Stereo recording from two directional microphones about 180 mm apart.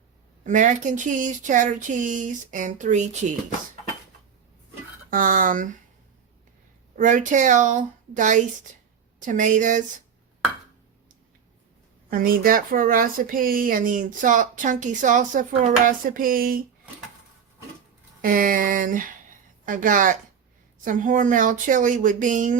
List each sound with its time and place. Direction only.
0.4 s speech: 45° right (ahead or behind)
5.1 s speech: 50° right (ahead or behind)
6.9 s speech: 45° right (ahead or behind)
12.1 s speech: 55° right (ahead or behind)
18.2 s speech: 50° right (ahead or behind)